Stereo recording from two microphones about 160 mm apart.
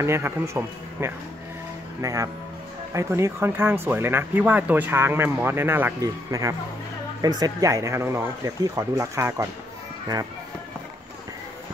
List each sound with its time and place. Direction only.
0.0 s speech: 15° right (ahead or behind)